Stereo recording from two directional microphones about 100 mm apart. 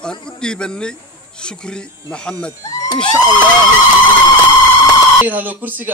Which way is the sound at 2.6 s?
40° left (ahead or behind).